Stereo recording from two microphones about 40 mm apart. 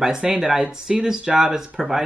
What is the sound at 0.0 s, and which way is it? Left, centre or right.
Speech, centre.